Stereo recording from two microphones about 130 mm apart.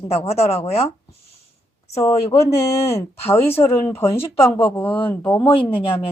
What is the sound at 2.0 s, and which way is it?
Speech, 50° left (ahead or behind).